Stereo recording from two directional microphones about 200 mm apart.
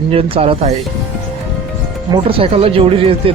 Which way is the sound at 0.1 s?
30° right (ahead or behind).